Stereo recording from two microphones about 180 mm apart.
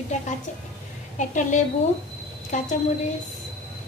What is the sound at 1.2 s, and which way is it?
A woman's voice, 45° left (ahead or behind).